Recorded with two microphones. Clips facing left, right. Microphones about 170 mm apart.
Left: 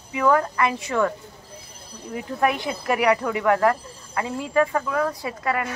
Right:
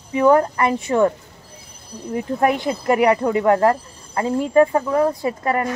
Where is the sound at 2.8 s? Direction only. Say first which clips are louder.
Right 4 dB; 30° right (ahead or behind).